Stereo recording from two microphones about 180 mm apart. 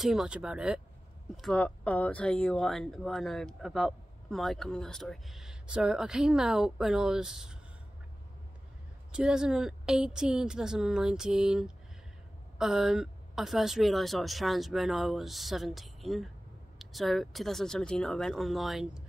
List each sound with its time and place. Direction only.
0.0 s speech: 5° right (ahead or behind)
9.1 s speech: 5° right (ahead or behind)